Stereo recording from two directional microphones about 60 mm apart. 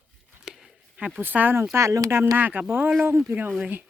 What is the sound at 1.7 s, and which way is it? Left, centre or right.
Speech, right.